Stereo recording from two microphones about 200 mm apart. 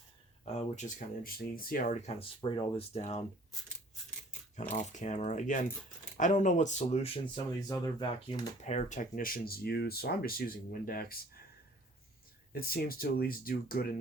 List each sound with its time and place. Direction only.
0.4 s speech: 35° left (ahead or behind)
4.7 s speech: 35° left (ahead or behind)
7.7 s speech: 20° left (ahead or behind)
8.6 s speech: 35° left (ahead or behind)
12.5 s speech: 50° left (ahead or behind)